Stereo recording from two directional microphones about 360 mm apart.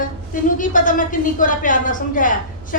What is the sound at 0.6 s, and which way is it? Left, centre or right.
A woman's voice, left.